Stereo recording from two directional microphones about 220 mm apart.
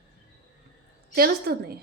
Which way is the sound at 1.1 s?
45° right (ahead or behind).